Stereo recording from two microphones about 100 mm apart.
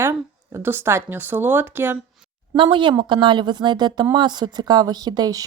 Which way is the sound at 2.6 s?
55° right (ahead or behind).